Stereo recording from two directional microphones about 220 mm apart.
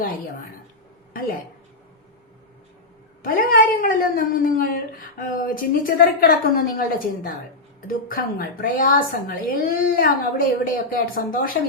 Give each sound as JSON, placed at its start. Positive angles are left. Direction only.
{"t": 3.2, "sound": "speech", "side_deg": 40}